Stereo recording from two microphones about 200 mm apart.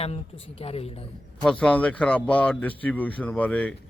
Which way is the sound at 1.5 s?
5° left (ahead or behind).